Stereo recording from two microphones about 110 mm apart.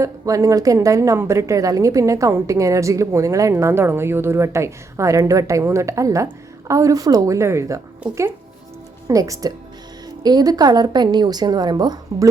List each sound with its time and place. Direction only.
0.0 s a woman's voice: 30° right (ahead or behind)
9.0 s a woman's voice: 30° right (ahead or behind)